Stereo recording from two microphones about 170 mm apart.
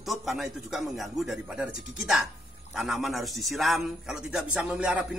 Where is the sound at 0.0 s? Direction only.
Centre (ahead or behind).